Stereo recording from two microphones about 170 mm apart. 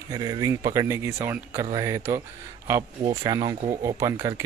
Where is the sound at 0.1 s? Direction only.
20° right (ahead or behind).